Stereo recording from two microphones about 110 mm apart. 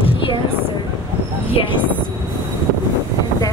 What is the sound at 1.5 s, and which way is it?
Speech, 55° left (ahead or behind).